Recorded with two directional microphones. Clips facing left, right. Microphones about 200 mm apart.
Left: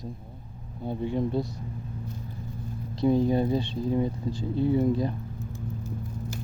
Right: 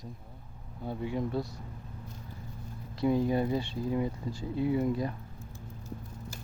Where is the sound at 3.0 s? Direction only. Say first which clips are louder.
Left 4 dB; 30° left (ahead or behind).